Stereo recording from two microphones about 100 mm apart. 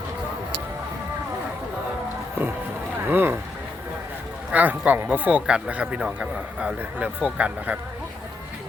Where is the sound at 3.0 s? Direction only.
20° right (ahead or behind).